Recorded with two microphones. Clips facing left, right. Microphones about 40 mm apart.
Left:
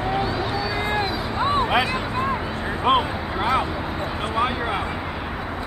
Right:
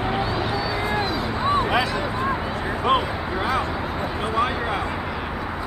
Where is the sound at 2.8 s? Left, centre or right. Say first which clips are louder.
Left 2 dB; centre.